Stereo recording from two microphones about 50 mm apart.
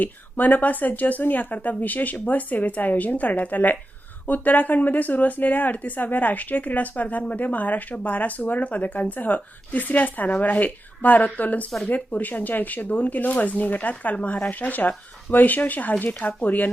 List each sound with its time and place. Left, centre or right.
0.0 s speech: left